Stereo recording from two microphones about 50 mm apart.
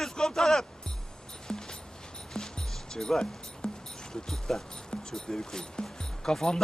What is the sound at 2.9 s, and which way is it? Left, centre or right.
Speech, centre.